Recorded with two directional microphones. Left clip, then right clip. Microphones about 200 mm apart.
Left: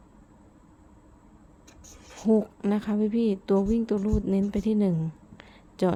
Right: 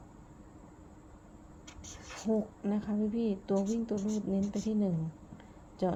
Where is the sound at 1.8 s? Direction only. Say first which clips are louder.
Right 1 dB; 10° left (ahead or behind).